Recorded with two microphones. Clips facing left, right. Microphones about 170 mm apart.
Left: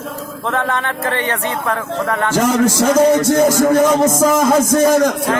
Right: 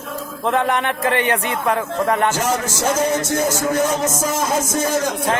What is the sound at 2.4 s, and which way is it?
A man's voice, 60° left (ahead or behind).